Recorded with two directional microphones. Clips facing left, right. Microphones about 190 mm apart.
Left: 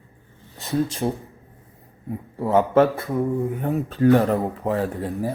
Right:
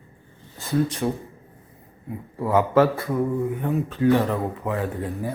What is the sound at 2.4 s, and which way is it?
Speech, 25° left (ahead or behind).